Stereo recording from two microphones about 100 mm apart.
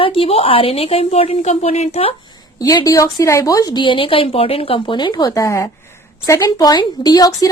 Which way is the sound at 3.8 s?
60° left (ahead or behind).